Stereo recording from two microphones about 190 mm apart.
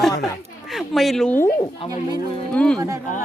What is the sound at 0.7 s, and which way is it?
Speech, centre (ahead or behind).